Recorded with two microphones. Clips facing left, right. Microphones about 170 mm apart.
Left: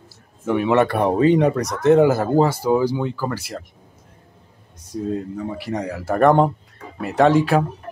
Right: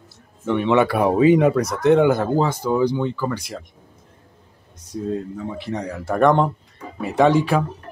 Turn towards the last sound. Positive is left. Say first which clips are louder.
# left 1 dB
turn(degrees=0)  # may be behind; listen again after turning